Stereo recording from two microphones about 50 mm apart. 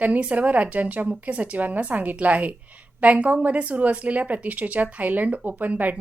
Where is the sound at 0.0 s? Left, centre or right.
Right.